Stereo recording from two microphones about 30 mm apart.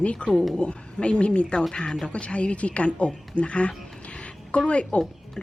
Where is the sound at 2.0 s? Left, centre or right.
Left.